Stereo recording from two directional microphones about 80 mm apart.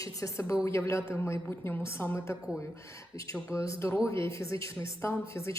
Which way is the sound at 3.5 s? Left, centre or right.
Left.